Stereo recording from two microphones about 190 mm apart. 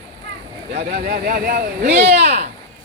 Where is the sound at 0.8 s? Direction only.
55° right (ahead or behind).